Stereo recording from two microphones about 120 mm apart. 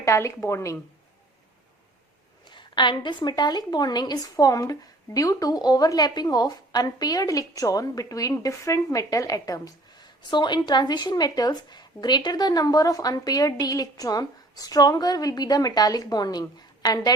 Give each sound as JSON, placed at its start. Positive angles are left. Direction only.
{"t": 0.0, "sound": "a woman's voice", "side_deg": 25}
{"t": 2.5, "sound": "a woman's voice", "side_deg": 40}